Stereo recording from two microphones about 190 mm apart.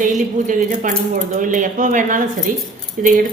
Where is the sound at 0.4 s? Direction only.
45° right (ahead or behind).